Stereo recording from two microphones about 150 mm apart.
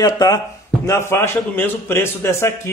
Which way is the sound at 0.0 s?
25° left (ahead or behind).